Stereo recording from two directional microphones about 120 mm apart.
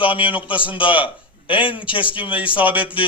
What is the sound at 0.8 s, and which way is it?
A man's voice, 45° left (ahead or behind).